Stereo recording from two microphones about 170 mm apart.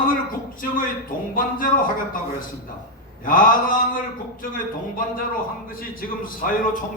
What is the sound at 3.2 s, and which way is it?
Speech, 55° left (ahead or behind).